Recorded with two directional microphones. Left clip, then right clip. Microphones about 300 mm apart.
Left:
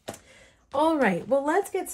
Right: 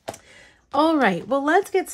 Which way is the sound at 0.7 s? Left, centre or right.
Right.